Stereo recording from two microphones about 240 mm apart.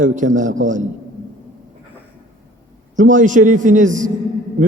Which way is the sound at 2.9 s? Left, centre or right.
Right.